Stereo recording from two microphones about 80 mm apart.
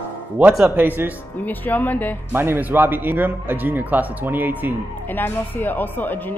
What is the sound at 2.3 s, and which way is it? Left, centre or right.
Speech, right.